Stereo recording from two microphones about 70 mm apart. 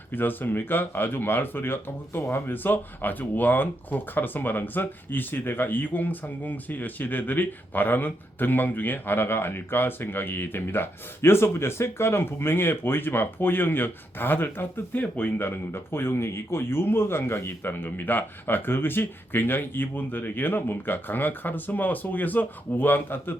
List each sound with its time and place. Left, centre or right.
0.1 s speech: left